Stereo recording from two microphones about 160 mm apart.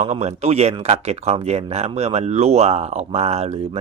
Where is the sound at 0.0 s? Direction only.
45° right (ahead or behind).